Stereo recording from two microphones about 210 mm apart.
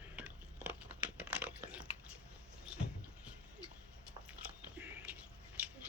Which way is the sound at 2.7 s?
5° right (ahead or behind).